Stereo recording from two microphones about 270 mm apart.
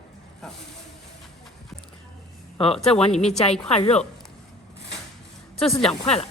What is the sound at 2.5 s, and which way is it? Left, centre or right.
Speech, left.